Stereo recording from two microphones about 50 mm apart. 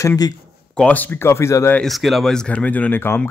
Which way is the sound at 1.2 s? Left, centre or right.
Left.